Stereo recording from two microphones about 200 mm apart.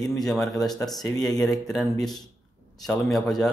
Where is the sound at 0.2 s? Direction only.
Centre (ahead or behind).